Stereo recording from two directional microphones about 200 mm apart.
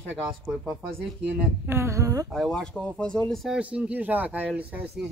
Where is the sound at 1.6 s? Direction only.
15° right (ahead or behind).